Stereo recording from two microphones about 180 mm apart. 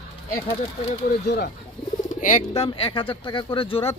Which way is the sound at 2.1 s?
40° left (ahead or behind).